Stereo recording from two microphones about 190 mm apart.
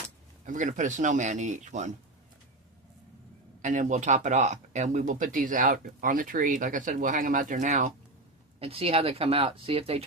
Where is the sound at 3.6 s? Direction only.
40° right (ahead or behind).